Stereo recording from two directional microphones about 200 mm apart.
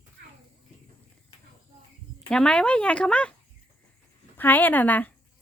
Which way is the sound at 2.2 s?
5° left (ahead or behind).